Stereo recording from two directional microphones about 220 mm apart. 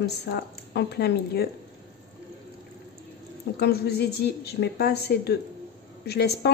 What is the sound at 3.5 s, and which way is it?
Speech, 45° left (ahead or behind).